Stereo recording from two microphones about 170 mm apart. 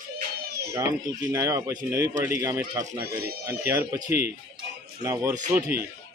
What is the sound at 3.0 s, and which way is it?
Speech, 65° right (ahead or behind).